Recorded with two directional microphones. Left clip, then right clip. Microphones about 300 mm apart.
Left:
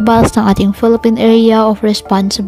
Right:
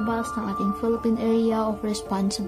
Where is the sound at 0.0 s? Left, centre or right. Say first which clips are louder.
Left 17 dB; left.